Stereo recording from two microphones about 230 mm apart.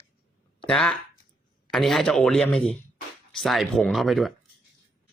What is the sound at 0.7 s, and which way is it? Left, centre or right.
Speech, centre.